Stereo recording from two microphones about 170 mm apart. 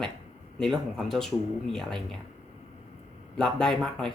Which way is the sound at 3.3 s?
5° left (ahead or behind).